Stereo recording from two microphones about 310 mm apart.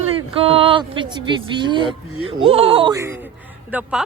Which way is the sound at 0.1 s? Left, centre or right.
Centre.